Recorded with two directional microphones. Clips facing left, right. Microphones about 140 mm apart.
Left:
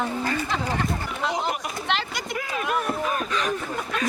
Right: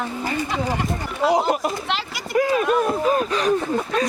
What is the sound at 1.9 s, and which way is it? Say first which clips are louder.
Speech: even; centre (ahead or behind).